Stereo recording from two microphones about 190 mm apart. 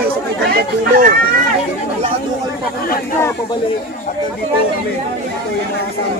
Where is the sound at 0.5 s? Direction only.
45° right (ahead or behind).